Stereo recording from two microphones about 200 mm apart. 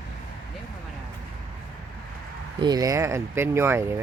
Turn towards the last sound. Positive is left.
turn(degrees=-10)  # may be behind; listen again after turning